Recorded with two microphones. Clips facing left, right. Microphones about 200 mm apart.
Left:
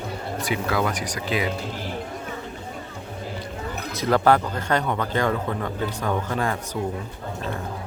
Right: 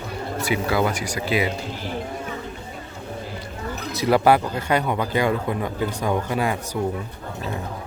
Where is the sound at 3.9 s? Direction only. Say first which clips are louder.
Right 2 dB; 10° right (ahead or behind).